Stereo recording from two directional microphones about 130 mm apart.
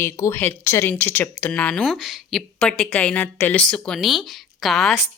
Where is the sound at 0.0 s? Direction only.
20° left (ahead or behind).